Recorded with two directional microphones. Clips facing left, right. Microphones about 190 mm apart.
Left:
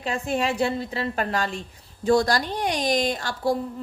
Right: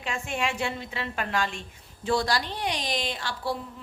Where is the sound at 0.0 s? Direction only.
40° left (ahead or behind).